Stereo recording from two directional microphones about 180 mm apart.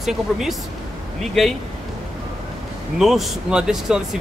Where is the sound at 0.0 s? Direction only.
Centre (ahead or behind).